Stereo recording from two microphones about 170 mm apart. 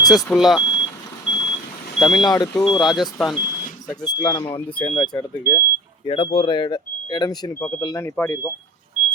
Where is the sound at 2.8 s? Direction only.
Centre (ahead or behind).